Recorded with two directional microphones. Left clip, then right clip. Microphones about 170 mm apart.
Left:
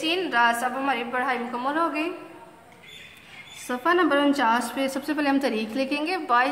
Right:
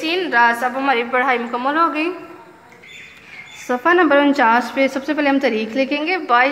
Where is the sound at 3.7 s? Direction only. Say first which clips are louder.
Right 8 dB; 25° right (ahead or behind); by 6.5 s 10° right (ahead or behind).